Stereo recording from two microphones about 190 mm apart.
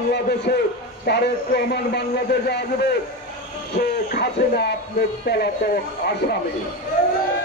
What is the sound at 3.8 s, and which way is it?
A man's voice, 55° left (ahead or behind).